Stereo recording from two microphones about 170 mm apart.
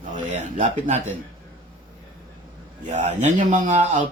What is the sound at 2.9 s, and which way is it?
Speech, 40° right (ahead or behind).